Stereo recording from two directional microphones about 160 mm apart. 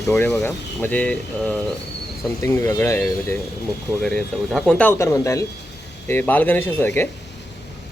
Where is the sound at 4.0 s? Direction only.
5° left (ahead or behind).